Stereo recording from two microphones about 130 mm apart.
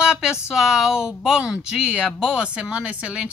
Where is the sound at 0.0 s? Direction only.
5° right (ahead or behind).